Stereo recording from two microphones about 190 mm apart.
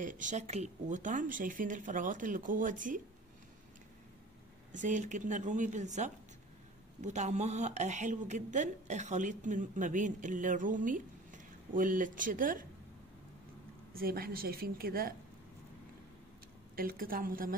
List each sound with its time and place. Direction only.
0.0 s speech: 45° right (ahead or behind)
4.7 s a woman's voice: 40° right (ahead or behind)
13.9 s speech: 50° right (ahead or behind)
16.7 s speech: 50° right (ahead or behind)